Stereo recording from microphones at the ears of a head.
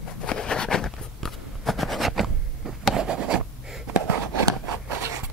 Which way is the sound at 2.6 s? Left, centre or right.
Right.